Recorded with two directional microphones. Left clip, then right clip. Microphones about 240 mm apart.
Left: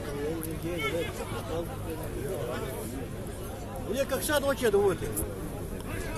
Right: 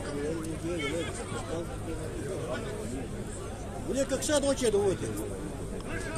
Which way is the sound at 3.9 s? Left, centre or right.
Left.